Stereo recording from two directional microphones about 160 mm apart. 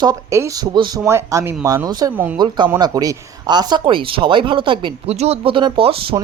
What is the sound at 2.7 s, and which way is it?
Speech, 25° right (ahead or behind).